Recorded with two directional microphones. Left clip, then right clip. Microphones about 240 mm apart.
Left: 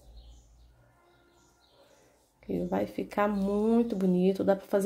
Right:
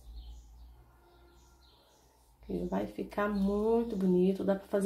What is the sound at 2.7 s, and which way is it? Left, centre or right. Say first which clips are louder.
Speech: left 5 dB; left.